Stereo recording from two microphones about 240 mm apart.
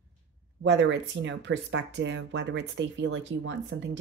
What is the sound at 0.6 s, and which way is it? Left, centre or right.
Speech, right.